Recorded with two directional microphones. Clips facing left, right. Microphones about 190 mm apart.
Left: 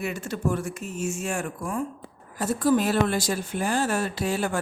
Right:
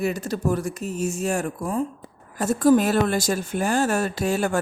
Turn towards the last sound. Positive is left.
turn(degrees=-45)  # may be behind; listen again after turning